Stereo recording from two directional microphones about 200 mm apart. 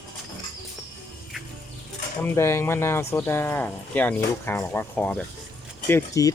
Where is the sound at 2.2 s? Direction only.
15° left (ahead or behind).